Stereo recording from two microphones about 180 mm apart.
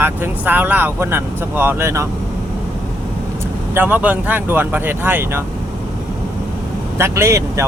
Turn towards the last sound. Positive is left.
turn(degrees=-15)  # may be behind; listen again after turning